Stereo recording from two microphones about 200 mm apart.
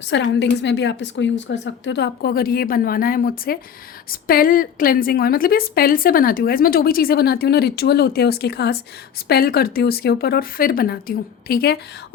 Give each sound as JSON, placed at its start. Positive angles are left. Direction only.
{"t": 0.1, "sound": "a woman's voice", "side_deg": 60}